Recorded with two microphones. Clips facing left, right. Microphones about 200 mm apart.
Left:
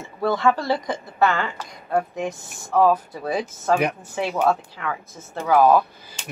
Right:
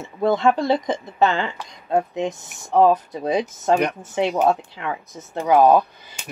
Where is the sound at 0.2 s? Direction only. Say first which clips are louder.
Right 3 dB; 20° right (ahead or behind).